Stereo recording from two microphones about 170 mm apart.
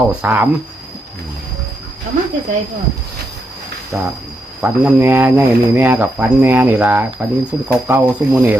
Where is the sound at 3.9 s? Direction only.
10° right (ahead or behind).